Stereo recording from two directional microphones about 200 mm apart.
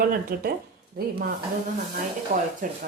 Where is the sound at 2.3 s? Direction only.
35° right (ahead or behind).